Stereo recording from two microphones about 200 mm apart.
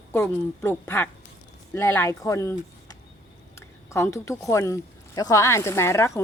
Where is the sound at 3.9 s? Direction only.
15° left (ahead or behind).